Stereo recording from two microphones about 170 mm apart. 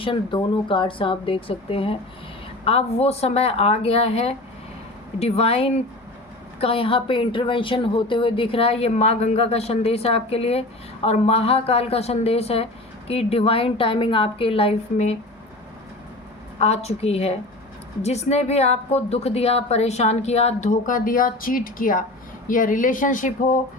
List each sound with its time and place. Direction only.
0.0 s speech: 30° left (ahead or behind)
16.6 s speech: 40° left (ahead or behind)